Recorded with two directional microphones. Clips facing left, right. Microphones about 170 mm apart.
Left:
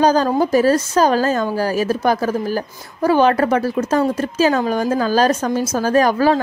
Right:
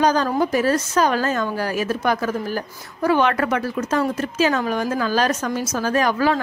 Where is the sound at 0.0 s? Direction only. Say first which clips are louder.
Left 4 dB; 30° left (ahead or behind).